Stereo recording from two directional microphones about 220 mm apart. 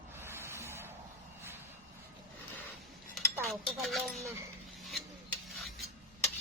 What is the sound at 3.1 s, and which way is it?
Dishes, centre (ahead or behind).